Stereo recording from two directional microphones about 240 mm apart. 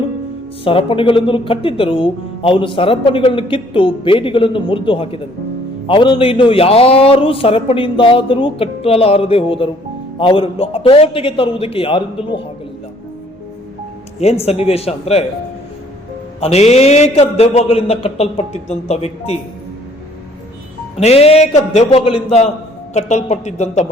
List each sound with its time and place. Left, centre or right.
0.6 s speech: left
14.2 s speech: left
16.4 s speech: left
20.9 s speech: left